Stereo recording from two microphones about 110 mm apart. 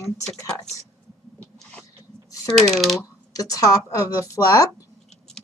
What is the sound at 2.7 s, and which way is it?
Speech, centre (ahead or behind).